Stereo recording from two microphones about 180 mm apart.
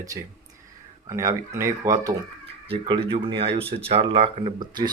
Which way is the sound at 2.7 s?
30° right (ahead or behind).